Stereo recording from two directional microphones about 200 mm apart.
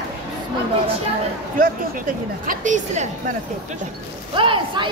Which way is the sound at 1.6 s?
45° right (ahead or behind).